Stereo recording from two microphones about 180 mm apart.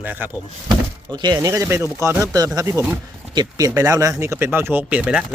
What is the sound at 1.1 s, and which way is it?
Speech, 25° right (ahead or behind).